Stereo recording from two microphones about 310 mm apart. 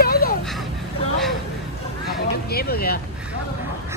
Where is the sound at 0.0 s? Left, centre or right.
Left.